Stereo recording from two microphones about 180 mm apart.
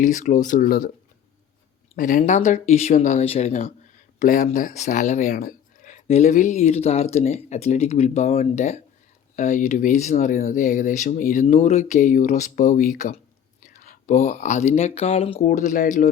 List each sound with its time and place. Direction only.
0.0 s speech: 45° left (ahead or behind)
2.0 s speech: 45° left (ahead or behind)